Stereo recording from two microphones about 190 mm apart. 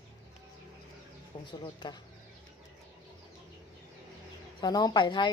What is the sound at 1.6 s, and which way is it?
Speech, 25° left (ahead or behind).